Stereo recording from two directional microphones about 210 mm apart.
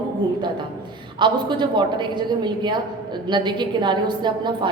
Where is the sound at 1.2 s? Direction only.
20° right (ahead or behind).